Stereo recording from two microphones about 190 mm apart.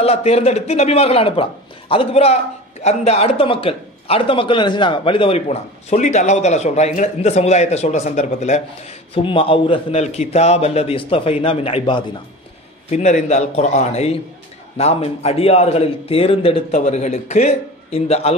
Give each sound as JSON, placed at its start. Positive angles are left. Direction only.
{"t": 0.0, "sound": "a man's voice", "side_deg": 30}
{"t": 12.9, "sound": "speech", "side_deg": 40}